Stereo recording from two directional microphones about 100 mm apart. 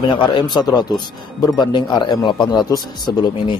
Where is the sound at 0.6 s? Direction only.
45° left (ahead or behind).